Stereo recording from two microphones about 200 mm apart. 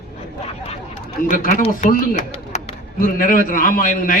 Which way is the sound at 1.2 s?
40° left (ahead or behind).